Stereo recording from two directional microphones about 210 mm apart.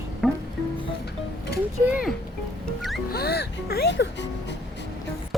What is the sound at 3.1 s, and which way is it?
Music, 50° left (ahead or behind).